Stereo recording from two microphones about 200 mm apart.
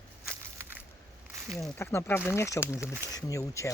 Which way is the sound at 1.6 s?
10° left (ahead or behind).